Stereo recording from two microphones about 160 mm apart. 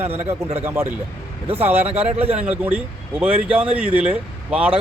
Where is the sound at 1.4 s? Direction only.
40° right (ahead or behind).